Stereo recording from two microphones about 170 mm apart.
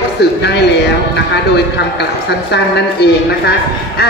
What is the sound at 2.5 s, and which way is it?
A woman's voice, 75° left (ahead or behind).